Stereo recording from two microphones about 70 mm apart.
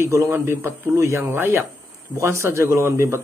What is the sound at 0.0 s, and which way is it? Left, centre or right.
A man's voice, right.